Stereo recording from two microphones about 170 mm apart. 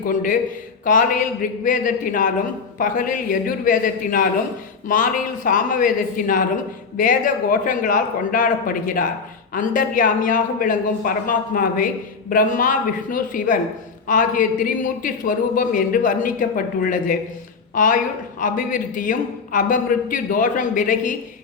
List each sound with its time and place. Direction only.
0.9 s a woman's voice: 55° left (ahead or behind)
5.5 s a woman's voice: 50° left (ahead or behind)